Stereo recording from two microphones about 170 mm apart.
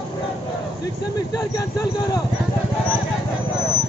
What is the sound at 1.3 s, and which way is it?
Speech, 20° left (ahead or behind).